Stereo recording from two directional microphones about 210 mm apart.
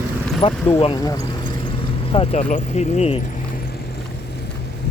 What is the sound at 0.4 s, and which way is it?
Speech, 25° left (ahead or behind).